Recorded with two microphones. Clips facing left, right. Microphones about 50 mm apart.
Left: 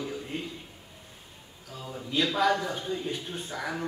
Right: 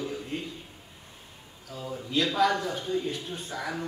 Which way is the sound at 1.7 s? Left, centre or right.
Centre.